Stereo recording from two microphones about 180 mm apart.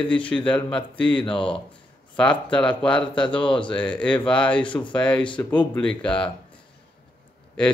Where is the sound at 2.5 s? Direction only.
5° left (ahead or behind).